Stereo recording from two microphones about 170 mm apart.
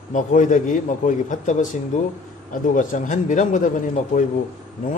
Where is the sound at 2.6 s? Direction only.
50° left (ahead or behind).